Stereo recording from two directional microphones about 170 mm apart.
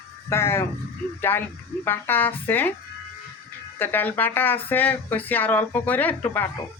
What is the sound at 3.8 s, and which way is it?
Speech, 10° left (ahead or behind).